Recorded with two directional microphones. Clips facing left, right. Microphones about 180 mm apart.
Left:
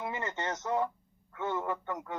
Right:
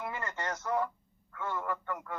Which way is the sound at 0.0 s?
25° left (ahead or behind).